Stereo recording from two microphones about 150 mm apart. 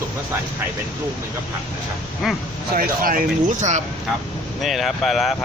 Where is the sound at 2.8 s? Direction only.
70° right (ahead or behind).